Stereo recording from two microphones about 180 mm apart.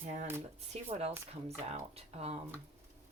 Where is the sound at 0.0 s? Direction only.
45° right (ahead or behind).